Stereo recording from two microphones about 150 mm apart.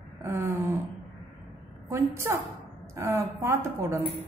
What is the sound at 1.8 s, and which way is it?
A woman's voice, 15° right (ahead or behind).